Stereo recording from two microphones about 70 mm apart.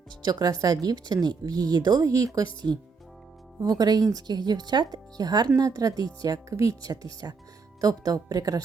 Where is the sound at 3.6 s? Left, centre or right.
Right.